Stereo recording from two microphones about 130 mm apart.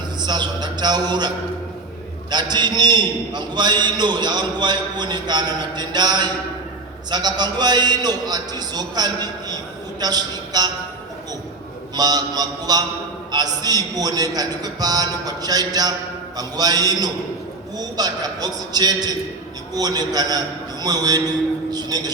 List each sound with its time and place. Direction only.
0.2 s a man's voice: 35° right (ahead or behind)
2.3 s a man's voice: 35° right (ahead or behind)
11.9 s a man's voice: 30° right (ahead or behind)